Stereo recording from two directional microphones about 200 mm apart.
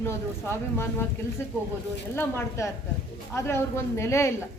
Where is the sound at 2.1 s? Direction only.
15° left (ahead or behind).